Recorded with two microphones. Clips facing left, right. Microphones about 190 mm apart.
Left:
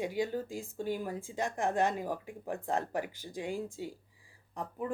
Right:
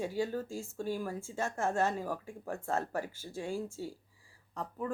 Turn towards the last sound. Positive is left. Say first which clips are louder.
# even
turn(degrees=15)  # may be behind; listen again after turning